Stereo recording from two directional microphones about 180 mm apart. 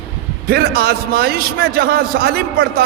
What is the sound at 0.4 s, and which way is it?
A man's voice, 60° right (ahead or behind).